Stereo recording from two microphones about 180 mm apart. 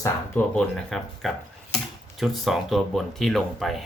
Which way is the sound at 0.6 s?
Centre (ahead or behind).